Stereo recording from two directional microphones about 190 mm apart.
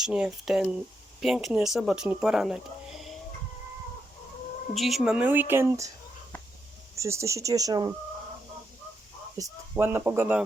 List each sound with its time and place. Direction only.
0.0 s speech: 5° right (ahead or behind)
4.7 s speech: centre (ahead or behind)
6.9 s speech: 15° right (ahead or behind)
9.4 s speech: 10° right (ahead or behind)